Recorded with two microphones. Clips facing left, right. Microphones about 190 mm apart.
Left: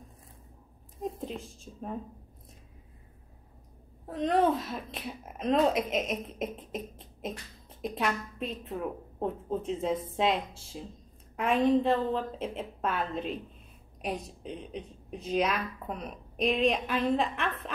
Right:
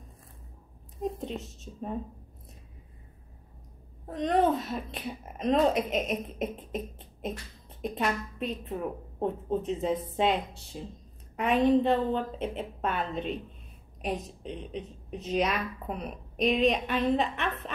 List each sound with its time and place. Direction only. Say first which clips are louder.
1.0 s a woman's voice: right 2 dB; centre (ahead or behind)
1.4 s a woman's voice: right 1 dB; 30° left (ahead or behind)
4.0 s a woman's voice: right 1 dB; centre (ahead or behind)